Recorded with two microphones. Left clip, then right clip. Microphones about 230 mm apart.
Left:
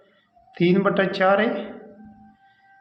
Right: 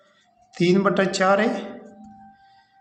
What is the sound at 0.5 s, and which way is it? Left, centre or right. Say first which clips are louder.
A man's voice: even; centre.